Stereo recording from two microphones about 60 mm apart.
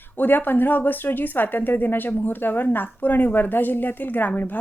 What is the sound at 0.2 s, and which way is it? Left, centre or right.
A woman's voice, left.